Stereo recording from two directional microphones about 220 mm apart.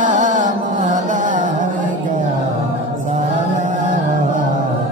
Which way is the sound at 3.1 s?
35° right (ahead or behind).